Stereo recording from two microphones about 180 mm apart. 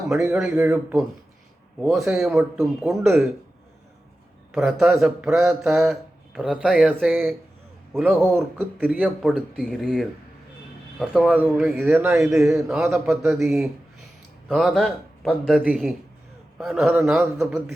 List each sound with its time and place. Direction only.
0.3 s speech: 5° right (ahead or behind)
2.1 s speech: centre (ahead or behind)
4.5 s speech: centre (ahead or behind)
11.9 s speech: 10° right (ahead or behind)